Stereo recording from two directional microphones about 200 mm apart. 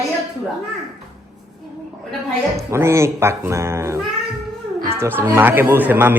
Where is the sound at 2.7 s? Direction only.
15° right (ahead or behind).